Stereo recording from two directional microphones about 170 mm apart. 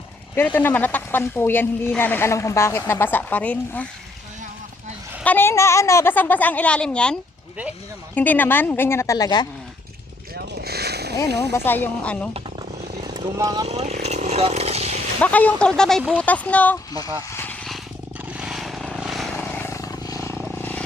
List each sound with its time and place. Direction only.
0.3 s speech: 10° left (ahead or behind)
5.2 s speech: 10° left (ahead or behind)
10.3 s a sound: 70° right (ahead or behind)
11.3 s speech: 75° right (ahead or behind)
11.5 s speech: 10° left (ahead or behind)
12.3 s vehicle: 25° right (ahead or behind)
13.7 s speech: 40° right (ahead or behind)
15.2 s speech: 10° left (ahead or behind)
17.3 s vehicle: 10° left (ahead or behind)
18.3 s vehicle: 5° right (ahead or behind)
19.5 s vehicle: 15° left (ahead or behind)
20.6 s vehicle: 10° left (ahead or behind)